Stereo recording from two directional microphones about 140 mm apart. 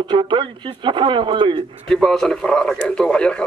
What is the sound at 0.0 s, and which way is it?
Speech, 35° right (ahead or behind).